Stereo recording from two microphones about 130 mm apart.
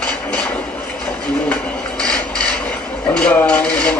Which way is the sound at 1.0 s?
5° left (ahead or behind).